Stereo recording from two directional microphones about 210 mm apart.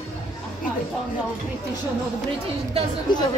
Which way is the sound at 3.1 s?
20° left (ahead or behind).